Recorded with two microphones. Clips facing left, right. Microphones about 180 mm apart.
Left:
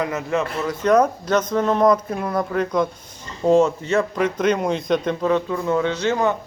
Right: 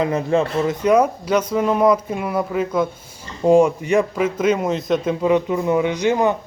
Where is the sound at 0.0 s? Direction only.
30° right (ahead or behind).